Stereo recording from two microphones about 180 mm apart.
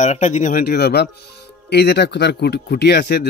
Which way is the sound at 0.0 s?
40° left (ahead or behind).